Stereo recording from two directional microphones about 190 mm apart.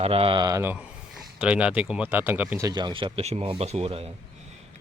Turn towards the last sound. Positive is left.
turn(degrees=-30)  # may be behind; listen again after turning